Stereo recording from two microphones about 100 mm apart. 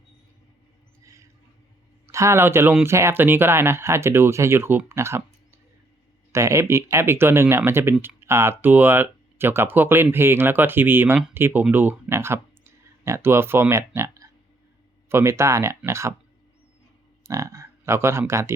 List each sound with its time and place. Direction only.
2.0 s speech: 30° right (ahead or behind)
17.2 s speech: 30° right (ahead or behind)